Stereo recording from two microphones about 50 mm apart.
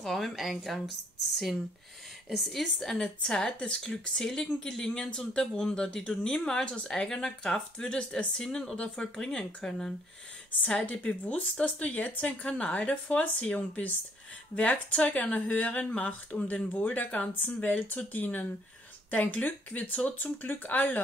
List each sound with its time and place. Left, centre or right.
0.0 s speech: centre
2.2 s speech: centre
3.0 s speech: centre
3.5 s speech: left
10.6 s speech: left